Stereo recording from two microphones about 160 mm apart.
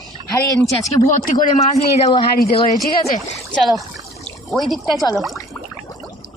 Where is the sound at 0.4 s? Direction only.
20° left (ahead or behind).